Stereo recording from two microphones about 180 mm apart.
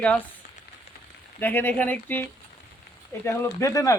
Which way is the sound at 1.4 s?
10° left (ahead or behind).